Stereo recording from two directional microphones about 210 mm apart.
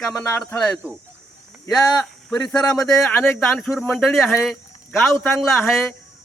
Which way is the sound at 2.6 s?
20° left (ahead or behind).